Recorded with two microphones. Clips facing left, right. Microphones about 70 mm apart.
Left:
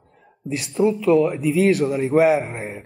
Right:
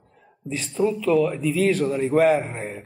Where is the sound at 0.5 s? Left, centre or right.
Centre.